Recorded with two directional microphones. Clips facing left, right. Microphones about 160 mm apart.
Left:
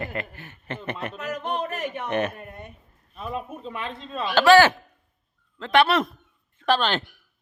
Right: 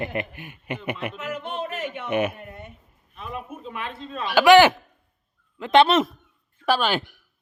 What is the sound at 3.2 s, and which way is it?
A man's voice, 35° left (ahead or behind).